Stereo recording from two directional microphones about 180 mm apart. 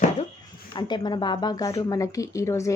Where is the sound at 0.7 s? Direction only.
25° left (ahead or behind).